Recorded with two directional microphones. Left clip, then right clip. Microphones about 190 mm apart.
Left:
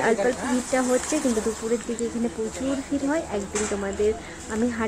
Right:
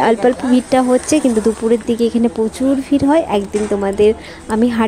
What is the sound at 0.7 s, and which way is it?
Speech, 45° right (ahead or behind).